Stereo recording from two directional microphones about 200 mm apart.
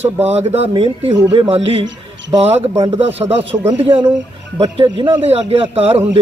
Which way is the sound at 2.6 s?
15° right (ahead or behind).